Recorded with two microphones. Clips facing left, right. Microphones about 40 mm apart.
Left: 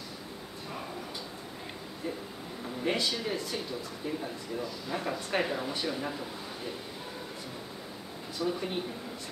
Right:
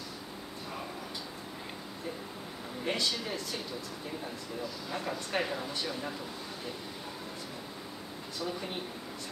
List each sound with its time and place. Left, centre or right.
2.8 s speech: centre
8.4 s speech: centre